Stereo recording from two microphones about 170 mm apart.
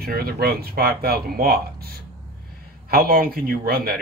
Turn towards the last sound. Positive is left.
turn(degrees=-60)  # may be behind; listen again after turning